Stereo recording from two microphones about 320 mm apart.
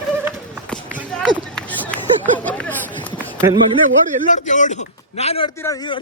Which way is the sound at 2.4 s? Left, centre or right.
Centre.